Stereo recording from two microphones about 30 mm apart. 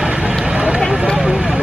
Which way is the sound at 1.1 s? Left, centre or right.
Right.